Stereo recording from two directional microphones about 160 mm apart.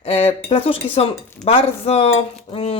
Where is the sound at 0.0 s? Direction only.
40° left (ahead or behind).